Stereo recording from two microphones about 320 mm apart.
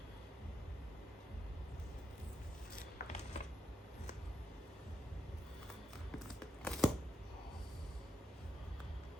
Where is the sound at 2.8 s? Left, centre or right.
Left.